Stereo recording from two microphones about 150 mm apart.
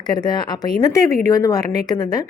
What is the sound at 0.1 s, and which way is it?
A woman's voice, 30° left (ahead or behind).